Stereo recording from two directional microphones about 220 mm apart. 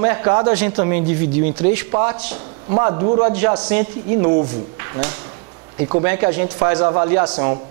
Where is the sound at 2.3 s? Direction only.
30° right (ahead or behind).